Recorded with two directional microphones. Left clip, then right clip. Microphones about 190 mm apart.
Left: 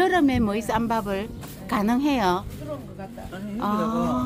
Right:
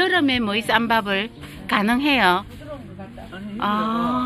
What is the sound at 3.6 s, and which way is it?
Speech, 10° left (ahead or behind).